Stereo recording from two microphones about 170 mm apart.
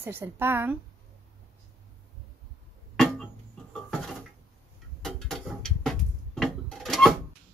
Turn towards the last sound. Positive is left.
turn(degrees=0)  # may be behind; listen again after turning